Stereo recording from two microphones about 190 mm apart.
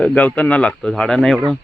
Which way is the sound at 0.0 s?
5° left (ahead or behind).